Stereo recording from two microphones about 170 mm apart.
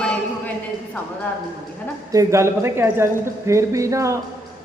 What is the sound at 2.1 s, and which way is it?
Speech, 20° right (ahead or behind).